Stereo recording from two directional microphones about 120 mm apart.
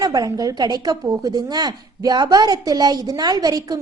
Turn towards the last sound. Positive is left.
turn(degrees=-30)  # may be behind; listen again after turning